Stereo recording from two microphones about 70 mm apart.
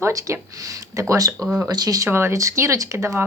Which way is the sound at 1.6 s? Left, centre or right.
Right.